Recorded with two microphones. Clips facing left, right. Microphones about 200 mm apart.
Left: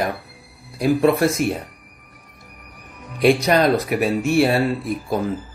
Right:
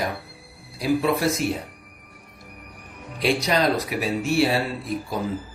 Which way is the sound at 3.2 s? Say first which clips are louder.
Left 6 dB; 55° left (ahead or behind).